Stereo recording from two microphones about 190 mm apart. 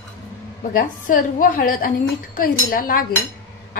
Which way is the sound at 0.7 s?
45° left (ahead or behind).